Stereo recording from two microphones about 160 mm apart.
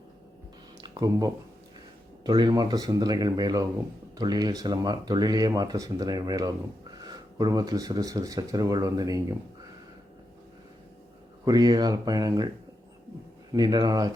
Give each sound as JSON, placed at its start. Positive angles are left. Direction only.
{"t": 0.8, "sound": "speech", "side_deg": -25}
{"t": 11.4, "sound": "speech", "side_deg": -25}
{"t": 13.5, "sound": "speech", "side_deg": -25}